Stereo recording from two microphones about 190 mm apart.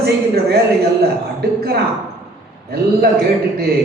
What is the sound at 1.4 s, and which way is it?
Speech, 55° right (ahead or behind).